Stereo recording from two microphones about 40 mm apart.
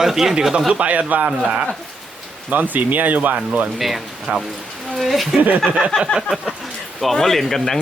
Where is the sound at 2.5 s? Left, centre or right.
Right.